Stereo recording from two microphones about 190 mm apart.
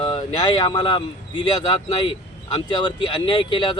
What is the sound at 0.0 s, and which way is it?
Speech, 25° left (ahead or behind).